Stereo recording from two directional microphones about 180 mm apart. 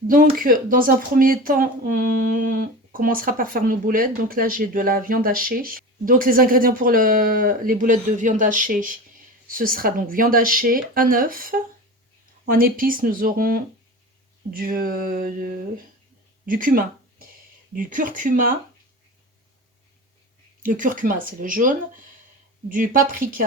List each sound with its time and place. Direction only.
0.1 s speech: 50° right (ahead or behind)
20.6 s speech: 50° right (ahead or behind)